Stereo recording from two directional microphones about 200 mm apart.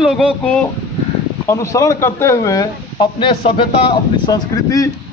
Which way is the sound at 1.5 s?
15° left (ahead or behind).